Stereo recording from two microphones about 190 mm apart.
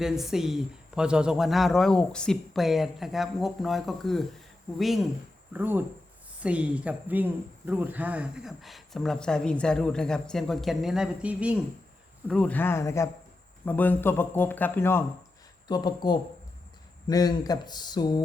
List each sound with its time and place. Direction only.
0.0 s speech: centre (ahead or behind)
5.5 s speech: 10° right (ahead or behind)
12.3 s speech: 5° left (ahead or behind); by 18.2 s 20° left (ahead or behind)